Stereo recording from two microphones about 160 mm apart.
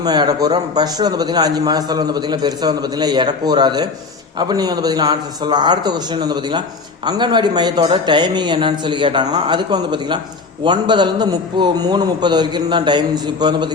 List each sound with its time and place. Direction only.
0.0 s a man's voice: 25° right (ahead or behind)